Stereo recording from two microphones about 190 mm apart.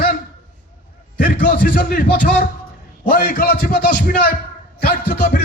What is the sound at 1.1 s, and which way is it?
A man's voice, 45° left (ahead or behind).